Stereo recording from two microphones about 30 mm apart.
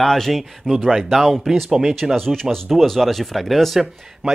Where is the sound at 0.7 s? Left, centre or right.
Left.